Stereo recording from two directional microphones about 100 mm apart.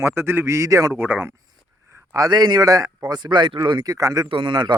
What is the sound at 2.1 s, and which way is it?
Speech, 45° right (ahead or behind).